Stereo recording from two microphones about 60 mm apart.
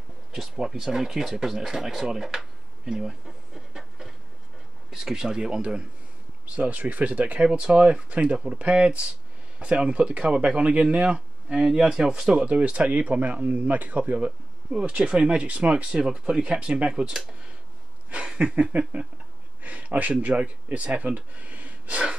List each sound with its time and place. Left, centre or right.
0.3 s speech: centre
18.1 s a sound: centre
19.6 s speech: right